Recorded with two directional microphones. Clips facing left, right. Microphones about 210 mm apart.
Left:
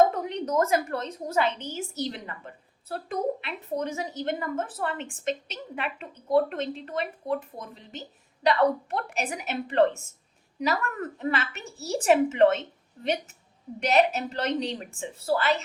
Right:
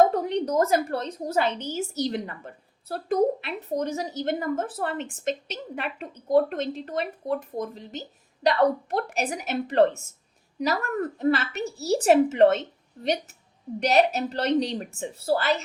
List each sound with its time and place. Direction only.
0.1 s a woman's voice: 35° right (ahead or behind)
13.7 s a woman's voice: 40° right (ahead or behind)